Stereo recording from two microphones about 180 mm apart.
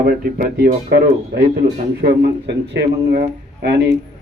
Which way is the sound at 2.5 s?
70° right (ahead or behind).